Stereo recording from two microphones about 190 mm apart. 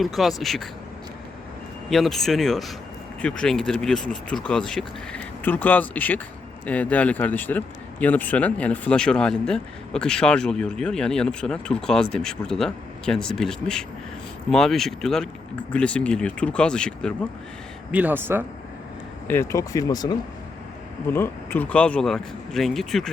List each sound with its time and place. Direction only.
0.0 s speech: centre (ahead or behind)
1.9 s speech: centre (ahead or behind)
17.9 s speech: 10° right (ahead or behind)
19.3 s speech: 15° left (ahead or behind)